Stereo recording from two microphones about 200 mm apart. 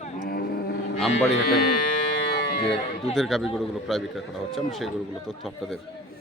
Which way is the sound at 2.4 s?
50° left (ahead or behind).